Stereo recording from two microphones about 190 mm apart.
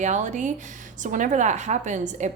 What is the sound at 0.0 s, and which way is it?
A woman's voice, 40° right (ahead or behind).